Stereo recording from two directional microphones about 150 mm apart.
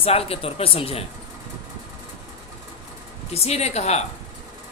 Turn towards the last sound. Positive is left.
turn(degrees=45)  # may be behind; listen again after turning